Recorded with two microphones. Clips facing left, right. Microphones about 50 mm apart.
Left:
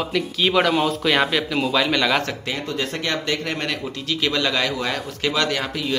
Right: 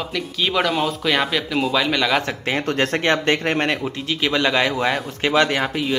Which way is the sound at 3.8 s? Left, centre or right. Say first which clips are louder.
Right 1 dB; right.